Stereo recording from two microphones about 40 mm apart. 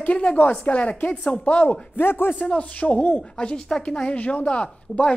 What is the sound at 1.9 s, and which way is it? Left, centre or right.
Speech, left.